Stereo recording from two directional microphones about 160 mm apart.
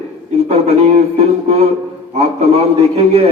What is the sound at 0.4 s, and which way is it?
Speech, 40° right (ahead or behind).